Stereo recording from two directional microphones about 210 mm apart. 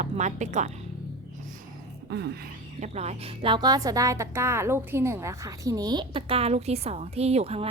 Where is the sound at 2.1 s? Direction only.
55° right (ahead or behind).